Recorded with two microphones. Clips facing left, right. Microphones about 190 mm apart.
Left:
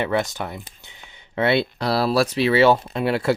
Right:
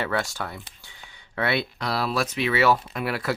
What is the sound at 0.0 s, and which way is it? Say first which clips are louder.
Speech: left 5 dB; 20° left (ahead or behind).